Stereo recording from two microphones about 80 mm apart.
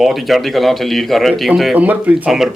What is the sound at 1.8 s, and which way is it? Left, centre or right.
Speech, centre.